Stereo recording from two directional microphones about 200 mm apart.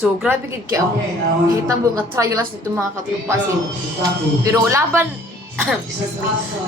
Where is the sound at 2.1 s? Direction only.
15° right (ahead or behind).